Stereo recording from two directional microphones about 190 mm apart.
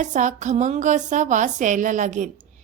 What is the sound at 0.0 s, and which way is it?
A woman's voice, 40° right (ahead or behind).